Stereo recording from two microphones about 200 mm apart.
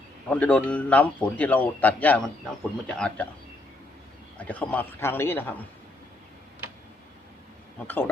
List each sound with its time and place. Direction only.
0.3 s a man's voice: 5° left (ahead or behind)
4.4 s a man's voice: 10° left (ahead or behind)
7.9 s a man's voice: 10° left (ahead or behind)